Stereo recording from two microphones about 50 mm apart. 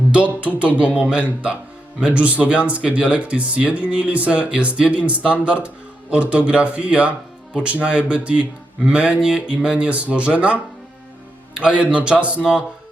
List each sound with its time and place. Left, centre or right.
0.1 s speech: right